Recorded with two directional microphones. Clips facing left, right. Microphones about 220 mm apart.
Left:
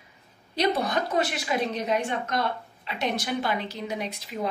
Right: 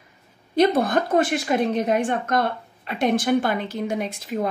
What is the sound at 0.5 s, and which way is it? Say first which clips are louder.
A woman's voice: right 7 dB; 50° right (ahead or behind).